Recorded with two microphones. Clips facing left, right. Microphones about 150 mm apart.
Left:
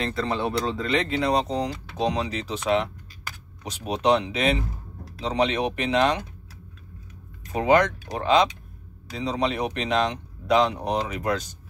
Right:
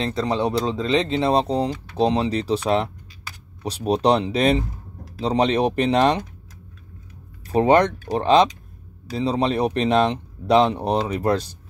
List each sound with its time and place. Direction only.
0.0 s speech: 20° right (ahead or behind); by 6.2 s 35° right (ahead or behind)
7.4 s speech: 35° right (ahead or behind)